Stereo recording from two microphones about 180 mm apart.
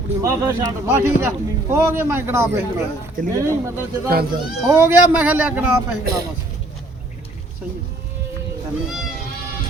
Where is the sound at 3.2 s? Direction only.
50° right (ahead or behind).